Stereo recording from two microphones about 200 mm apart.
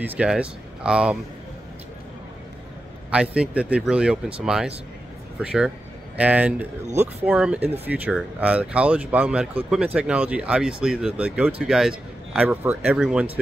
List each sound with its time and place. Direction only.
0.0 s speech: 5° right (ahead or behind)
3.1 s speech: 5° right (ahead or behind)